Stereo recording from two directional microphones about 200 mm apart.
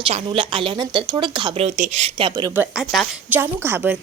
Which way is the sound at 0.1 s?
30° right (ahead or behind).